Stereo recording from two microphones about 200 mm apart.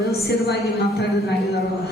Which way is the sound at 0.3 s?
55° left (ahead or behind).